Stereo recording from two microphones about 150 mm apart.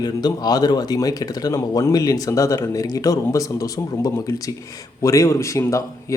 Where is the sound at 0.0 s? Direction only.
25° left (ahead or behind).